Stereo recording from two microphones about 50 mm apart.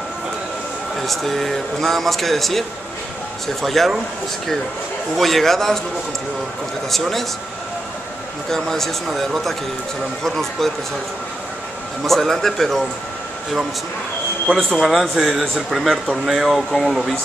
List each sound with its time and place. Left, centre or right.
0.9 s a man's voice: centre
3.6 s a man's voice: centre
5.1 s a man's voice: centre
6.9 s a man's voice: centre
8.5 s a man's voice: centre
12.1 s a man's voice: centre
14.7 s a man's voice: centre